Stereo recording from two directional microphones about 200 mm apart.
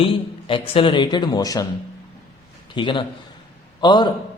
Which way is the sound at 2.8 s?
25° left (ahead or behind).